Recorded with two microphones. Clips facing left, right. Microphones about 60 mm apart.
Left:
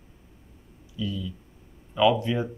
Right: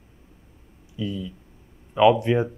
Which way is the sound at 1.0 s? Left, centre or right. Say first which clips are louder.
Right 2 dB; right.